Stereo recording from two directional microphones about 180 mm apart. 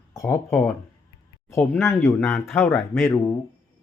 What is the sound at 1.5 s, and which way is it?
Speech, 10° left (ahead or behind).